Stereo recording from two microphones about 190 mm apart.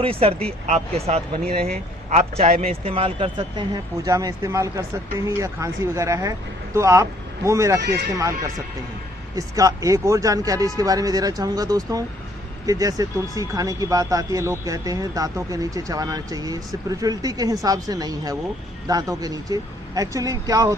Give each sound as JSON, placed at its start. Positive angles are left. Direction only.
{"t": 0.0, "sound": "a man's voice", "side_deg": -30}
{"t": 9.3, "sound": "speech", "side_deg": -15}